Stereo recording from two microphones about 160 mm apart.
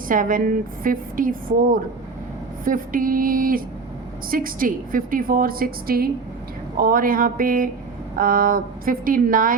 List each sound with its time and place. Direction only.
0.1 s a woman's voice: 60° right (ahead or behind)